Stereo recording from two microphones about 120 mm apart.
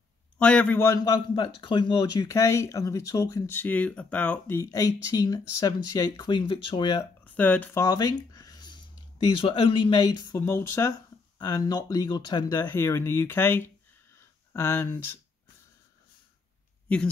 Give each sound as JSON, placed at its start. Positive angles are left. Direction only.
{"t": 0.4, "sound": "a man's voice", "side_deg": 10}
{"t": 0.7, "sound": "speech", "side_deg": 25}
{"t": 1.3, "sound": "speech", "side_deg": 40}
{"t": 4.6, "sound": "speech", "side_deg": 30}
{"t": 7.0, "sound": "speech", "side_deg": 15}
{"t": 7.7, "sound": "a sound", "side_deg": 30}
{"t": 9.3, "sound": "speech", "side_deg": 45}
{"t": 10.3, "sound": "speech", "side_deg": 20}
{"t": 12.5, "sound": "speech", "side_deg": 20}